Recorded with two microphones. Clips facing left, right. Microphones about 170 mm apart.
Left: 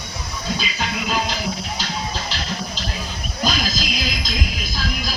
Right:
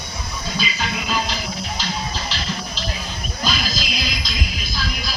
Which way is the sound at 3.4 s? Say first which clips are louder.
Left 3 dB; 45° left (ahead or behind).